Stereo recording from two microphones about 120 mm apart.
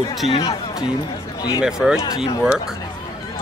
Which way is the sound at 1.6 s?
5° right (ahead or behind).